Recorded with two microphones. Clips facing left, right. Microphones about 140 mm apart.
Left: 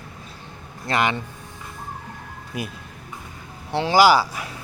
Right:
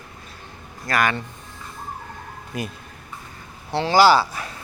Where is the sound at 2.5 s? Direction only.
10° left (ahead or behind).